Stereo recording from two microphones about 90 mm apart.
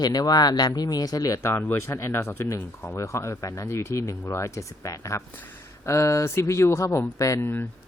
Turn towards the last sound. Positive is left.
turn(degrees=35)  # may be behind; listen again after turning